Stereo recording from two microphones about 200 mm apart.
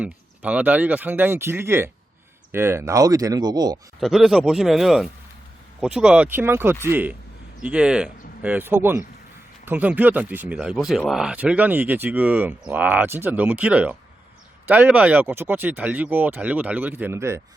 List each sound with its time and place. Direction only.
0.0 s speech: 5° right (ahead or behind)
4.0 s speech: centre (ahead or behind)